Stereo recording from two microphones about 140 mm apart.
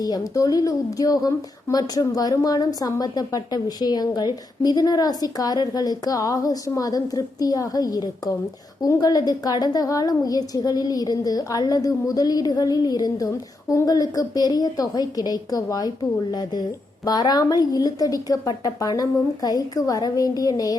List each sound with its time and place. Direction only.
0.0 s speech: 25° left (ahead or behind)